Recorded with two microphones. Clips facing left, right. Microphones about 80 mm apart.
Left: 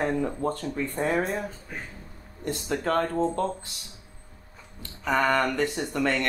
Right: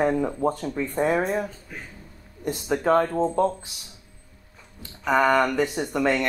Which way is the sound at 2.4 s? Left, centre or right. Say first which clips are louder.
Right 5 dB; centre.